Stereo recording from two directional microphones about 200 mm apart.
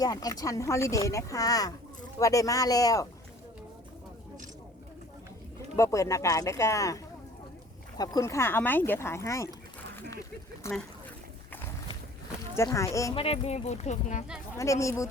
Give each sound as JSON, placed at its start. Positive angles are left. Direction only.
{"t": 0.0, "sound": "speech", "side_deg": 20}
{"t": 5.7, "sound": "speech", "side_deg": 15}
{"t": 10.6, "sound": "speech", "side_deg": 15}
{"t": 12.5, "sound": "speech", "side_deg": 15}
{"t": 13.1, "sound": "speech", "side_deg": 30}
{"t": 14.5, "sound": "speech", "side_deg": 15}